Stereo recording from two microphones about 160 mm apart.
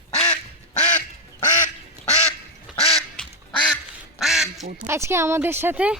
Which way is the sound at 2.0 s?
45° left (ahead or behind).